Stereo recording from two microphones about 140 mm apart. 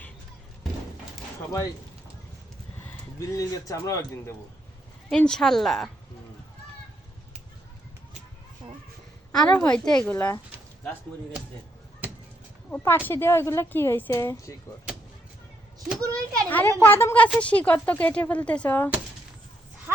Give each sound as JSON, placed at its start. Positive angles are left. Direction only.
{"t": 2.7, "sound": "speech", "side_deg": 20}
{"t": 5.0, "sound": "speech", "side_deg": 5}
{"t": 9.3, "sound": "speech", "side_deg": 5}
{"t": 12.7, "sound": "speech", "side_deg": 15}
{"t": 16.0, "sound": "a child's voice", "side_deg": -25}
{"t": 16.5, "sound": "speech", "side_deg": 10}